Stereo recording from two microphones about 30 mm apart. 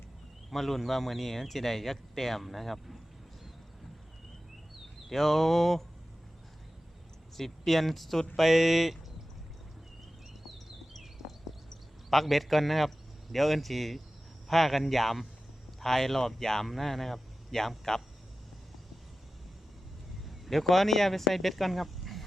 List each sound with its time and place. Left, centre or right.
0.5 s speech: centre
5.0 s speech: centre
7.3 s speech: centre
8.4 s speech: centre
12.1 s speech: centre
20.2 s speech: centre